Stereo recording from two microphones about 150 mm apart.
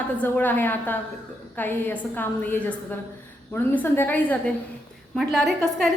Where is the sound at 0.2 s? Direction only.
10° left (ahead or behind).